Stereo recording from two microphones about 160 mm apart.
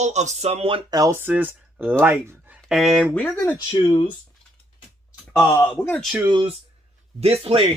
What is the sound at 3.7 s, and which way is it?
Speech, 35° left (ahead or behind).